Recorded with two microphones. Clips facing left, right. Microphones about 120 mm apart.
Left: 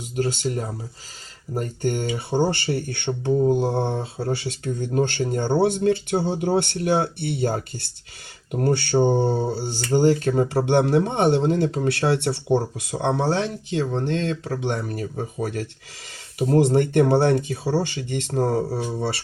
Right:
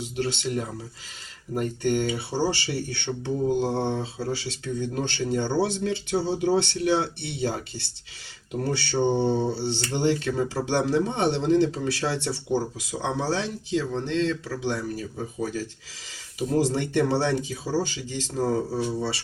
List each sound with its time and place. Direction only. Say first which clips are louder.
0.0 s speech: left 4 dB; 40° left (ahead or behind)
3.5 s mantra: left 3 dB; 20° left (ahead or behind)
3.8 s speech: left 2 dB; 50° left (ahead or behind)
10.7 s speech: left 3 dB; 60° left (ahead or behind)